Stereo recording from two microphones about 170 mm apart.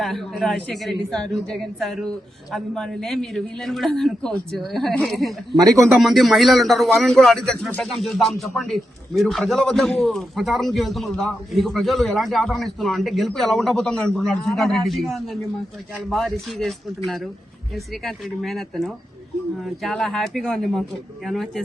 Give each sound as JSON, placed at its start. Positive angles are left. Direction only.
{"t": 0.0, "sound": "a man's voice", "side_deg": 0}
{"t": 5.5, "sound": "a man's voice", "side_deg": -20}
{"t": 6.0, "sound": "a man's voice", "side_deg": 0}